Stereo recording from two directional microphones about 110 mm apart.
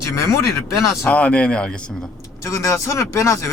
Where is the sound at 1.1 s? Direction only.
10° left (ahead or behind).